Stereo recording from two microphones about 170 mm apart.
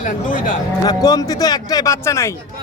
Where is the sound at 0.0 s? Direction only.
50° left (ahead or behind).